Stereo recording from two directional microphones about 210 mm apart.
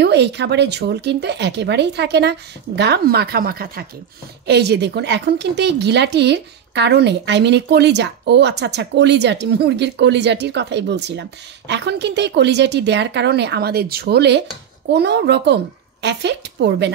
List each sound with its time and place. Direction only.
0.0 s speech: 55° right (ahead or behind)